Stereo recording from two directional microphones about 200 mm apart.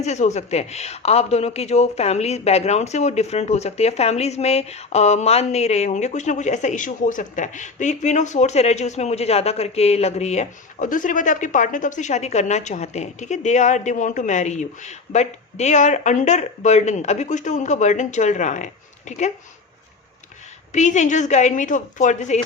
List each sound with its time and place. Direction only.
0.0 s a man's voice: 35° left (ahead or behind)
20.7 s a man's voice: 35° left (ahead or behind)